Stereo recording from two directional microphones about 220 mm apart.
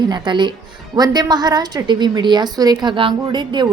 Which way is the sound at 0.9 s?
20° right (ahead or behind).